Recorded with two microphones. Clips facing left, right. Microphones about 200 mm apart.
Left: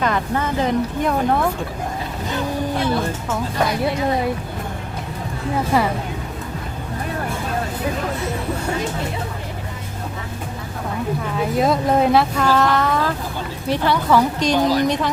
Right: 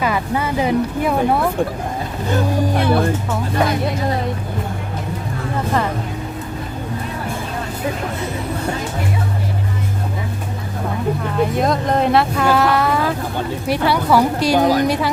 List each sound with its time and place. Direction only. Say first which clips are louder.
0.0 s a woman's voice: right 1 dB; 10° right (ahead or behind)
2.3 s speech: right 4 dB; 60° right (ahead or behind)
11.3 s a woman's voice: even; 5° left (ahead or behind)